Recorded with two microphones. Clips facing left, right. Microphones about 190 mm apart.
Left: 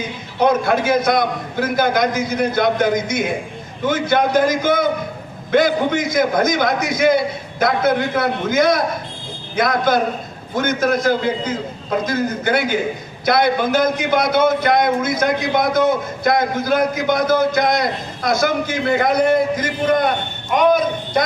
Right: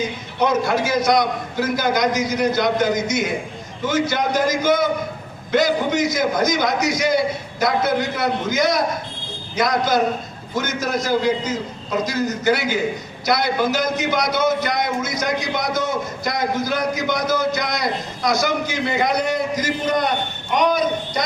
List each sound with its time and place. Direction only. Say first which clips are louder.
0.3 s a man's voice: left 3 dB; 55° left (ahead or behind)